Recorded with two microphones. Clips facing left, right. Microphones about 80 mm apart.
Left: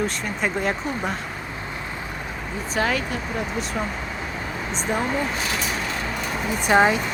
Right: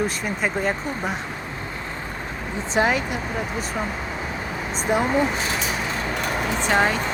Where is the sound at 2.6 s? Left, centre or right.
Right.